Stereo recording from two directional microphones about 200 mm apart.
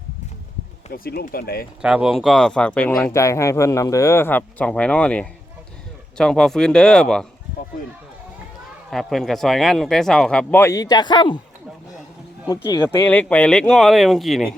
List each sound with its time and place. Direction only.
0.9 s speech: 45° left (ahead or behind)
1.8 s speech: 5° right (ahead or behind)
8.9 s speech: centre (ahead or behind); by 11.3 s 20° left (ahead or behind)
13.1 s speech: 5° left (ahead or behind)